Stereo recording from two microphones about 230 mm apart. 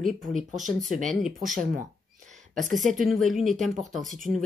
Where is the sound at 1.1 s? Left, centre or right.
Centre.